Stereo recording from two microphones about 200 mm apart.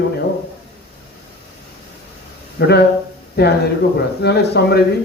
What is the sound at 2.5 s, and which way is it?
A man's voice, 55° left (ahead or behind).